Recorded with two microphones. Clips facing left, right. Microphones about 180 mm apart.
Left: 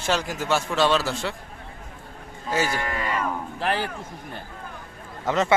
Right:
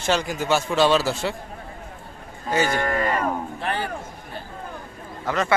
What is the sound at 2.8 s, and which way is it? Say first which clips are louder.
Cattle: right 4 dB; 45° right (ahead or behind).